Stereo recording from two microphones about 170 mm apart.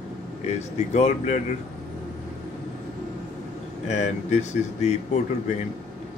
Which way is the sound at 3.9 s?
45° left (ahead or behind).